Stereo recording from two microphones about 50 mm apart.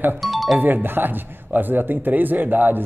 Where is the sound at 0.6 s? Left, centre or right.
Right.